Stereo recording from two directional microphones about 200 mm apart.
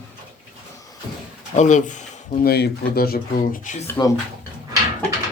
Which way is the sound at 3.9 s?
15° left (ahead or behind).